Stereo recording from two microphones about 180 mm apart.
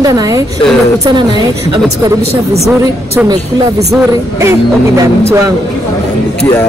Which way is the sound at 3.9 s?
15° right (ahead or behind).